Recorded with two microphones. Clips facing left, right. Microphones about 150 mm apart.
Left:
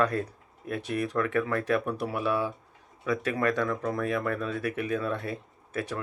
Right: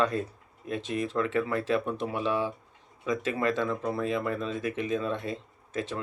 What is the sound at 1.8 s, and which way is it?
Speech, 10° left (ahead or behind).